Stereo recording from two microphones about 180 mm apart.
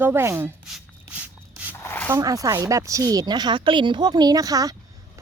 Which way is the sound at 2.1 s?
15° right (ahead or behind).